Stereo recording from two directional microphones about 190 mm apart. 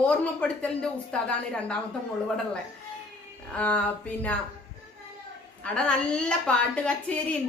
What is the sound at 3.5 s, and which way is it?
Speech, 5° left (ahead or behind).